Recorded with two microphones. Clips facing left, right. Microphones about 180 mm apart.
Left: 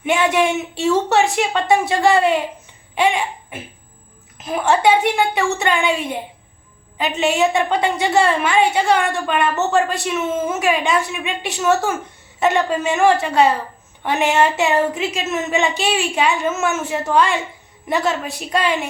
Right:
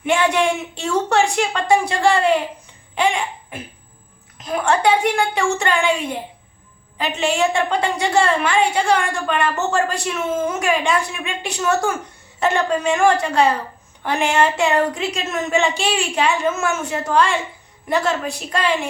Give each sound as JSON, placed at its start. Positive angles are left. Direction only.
{"t": 0.0, "sound": "a woman's voice", "side_deg": 5}
{"t": 2.9, "sound": "cough", "side_deg": 5}
{"t": 4.4, "sound": "a woman's voice", "side_deg": 5}
{"t": 7.0, "sound": "a woman's voice", "side_deg": 5}